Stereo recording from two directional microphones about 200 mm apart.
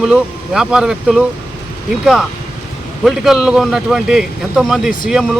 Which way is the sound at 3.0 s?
Centre (ahead or behind).